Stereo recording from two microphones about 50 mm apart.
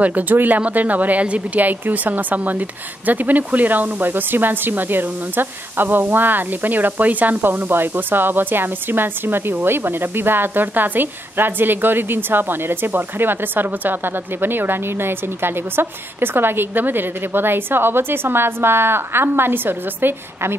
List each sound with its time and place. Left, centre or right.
0.0 s speech: right